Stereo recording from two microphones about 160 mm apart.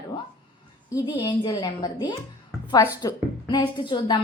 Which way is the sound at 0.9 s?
20° left (ahead or behind).